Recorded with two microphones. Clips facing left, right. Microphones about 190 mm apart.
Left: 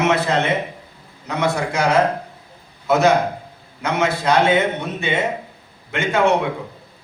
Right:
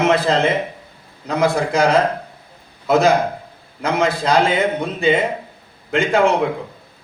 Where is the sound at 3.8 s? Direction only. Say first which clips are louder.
Right 1 dB; 35° right (ahead or behind).